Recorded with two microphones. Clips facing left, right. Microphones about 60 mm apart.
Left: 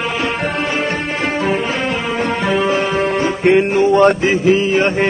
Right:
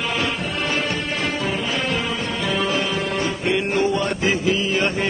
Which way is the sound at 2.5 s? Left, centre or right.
Left.